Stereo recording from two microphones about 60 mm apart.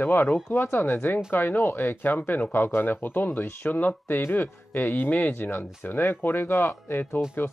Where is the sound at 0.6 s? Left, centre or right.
Left.